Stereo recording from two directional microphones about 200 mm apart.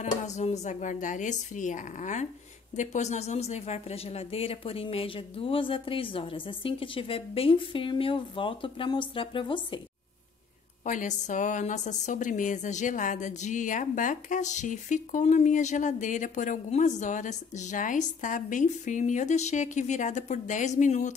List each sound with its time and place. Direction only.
0.0 s a woman's voice: 35° left (ahead or behind)
10.9 s a woman's voice: 40° left (ahead or behind)